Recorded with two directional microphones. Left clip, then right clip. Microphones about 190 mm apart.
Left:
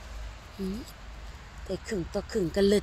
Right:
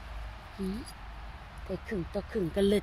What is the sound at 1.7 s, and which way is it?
Speech, 30° left (ahead or behind).